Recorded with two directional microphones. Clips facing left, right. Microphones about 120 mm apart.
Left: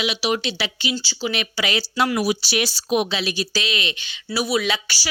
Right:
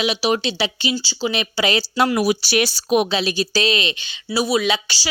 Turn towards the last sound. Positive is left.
turn(degrees=-20)  # may be behind; listen again after turning